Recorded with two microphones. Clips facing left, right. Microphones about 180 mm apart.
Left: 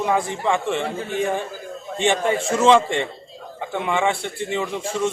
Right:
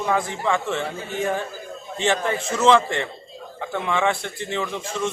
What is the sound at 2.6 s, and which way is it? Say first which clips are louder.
A man's voice: left 1 dB; 10° left (ahead or behind).